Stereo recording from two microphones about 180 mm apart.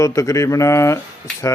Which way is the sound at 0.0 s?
15° left (ahead or behind).